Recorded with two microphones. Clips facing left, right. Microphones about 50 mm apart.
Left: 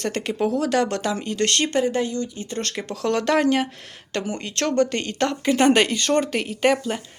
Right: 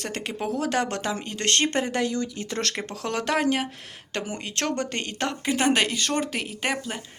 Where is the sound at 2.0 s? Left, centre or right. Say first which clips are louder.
Left 1 dB; right.